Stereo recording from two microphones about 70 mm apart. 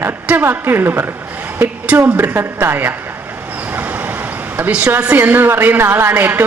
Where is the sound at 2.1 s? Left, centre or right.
Right.